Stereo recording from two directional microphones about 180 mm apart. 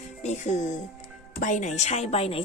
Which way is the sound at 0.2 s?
40° left (ahead or behind).